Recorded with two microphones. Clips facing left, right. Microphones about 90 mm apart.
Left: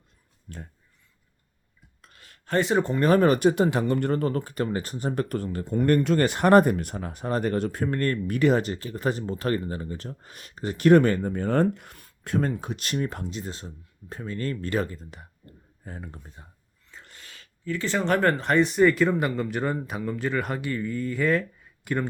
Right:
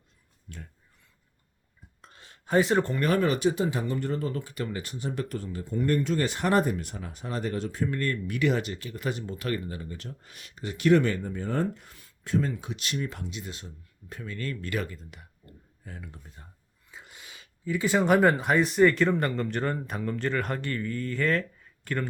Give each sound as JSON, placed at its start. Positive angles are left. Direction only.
{"t": 0.4, "sound": "speech", "side_deg": 40}
{"t": 2.0, "sound": "a sound", "side_deg": -30}
{"t": 2.5, "sound": "speech", "side_deg": 0}
{"t": 2.8, "sound": "speech", "side_deg": 20}
{"t": 3.1, "sound": "speech", "side_deg": 45}
{"t": 16.9, "sound": "speech", "side_deg": -10}